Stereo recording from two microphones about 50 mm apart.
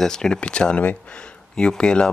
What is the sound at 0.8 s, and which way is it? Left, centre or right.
Speech, left.